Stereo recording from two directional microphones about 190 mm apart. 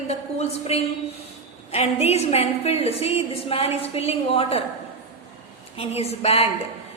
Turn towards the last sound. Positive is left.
turn(degrees=35)  # may be behind; listen again after turning